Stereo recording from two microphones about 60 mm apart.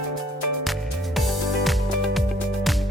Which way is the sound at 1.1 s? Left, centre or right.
Centre.